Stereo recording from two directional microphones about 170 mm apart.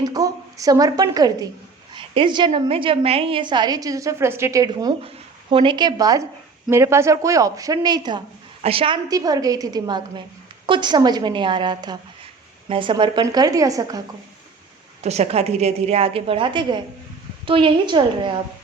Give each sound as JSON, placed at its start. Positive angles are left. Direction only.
{"t": 0.0, "sound": "a woman's voice", "side_deg": -20}
{"t": 9.0, "sound": "a woman's voice", "side_deg": -20}
{"t": 15.0, "sound": "a woman's voice", "side_deg": -40}